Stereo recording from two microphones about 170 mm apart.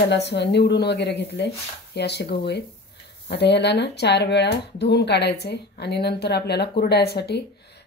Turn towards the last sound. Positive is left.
turn(degrees=75)  # may be behind; listen again after turning